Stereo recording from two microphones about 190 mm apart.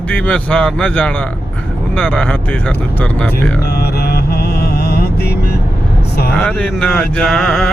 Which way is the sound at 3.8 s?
55° left (ahead or behind).